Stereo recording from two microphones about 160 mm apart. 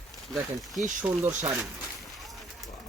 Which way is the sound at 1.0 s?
15° right (ahead or behind).